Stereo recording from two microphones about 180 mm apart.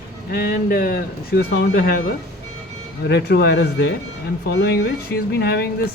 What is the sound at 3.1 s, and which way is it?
Speech, 70° left (ahead or behind).